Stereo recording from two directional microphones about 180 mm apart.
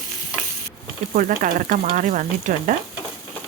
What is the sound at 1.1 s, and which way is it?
Speech, 50° right (ahead or behind).